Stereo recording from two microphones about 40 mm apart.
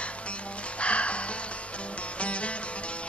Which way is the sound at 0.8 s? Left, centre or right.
Left.